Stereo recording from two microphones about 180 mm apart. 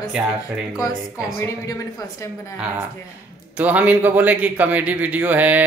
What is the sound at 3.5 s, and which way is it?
A man's voice, 10° right (ahead or behind).